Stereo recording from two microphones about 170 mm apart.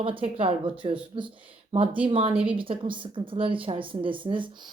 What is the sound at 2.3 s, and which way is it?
Speech, 5° right (ahead or behind).